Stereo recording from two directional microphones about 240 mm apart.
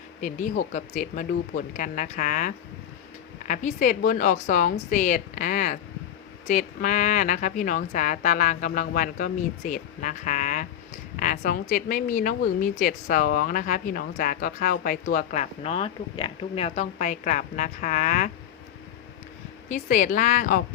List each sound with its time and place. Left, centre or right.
0.2 s a woman's voice: left
19.7 s a woman's voice: left